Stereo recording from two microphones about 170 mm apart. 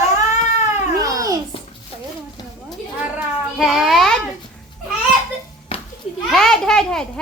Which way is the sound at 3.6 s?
Centre (ahead or behind).